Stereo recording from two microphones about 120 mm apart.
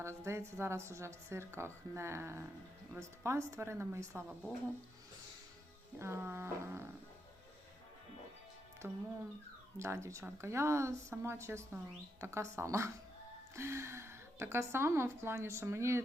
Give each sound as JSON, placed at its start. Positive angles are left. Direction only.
{"t": 0.3, "sound": "a woman's voice", "side_deg": -25}
{"t": 6.0, "sound": "a woman's voice", "side_deg": -20}
{"t": 8.8, "sound": "a woman's voice", "side_deg": -20}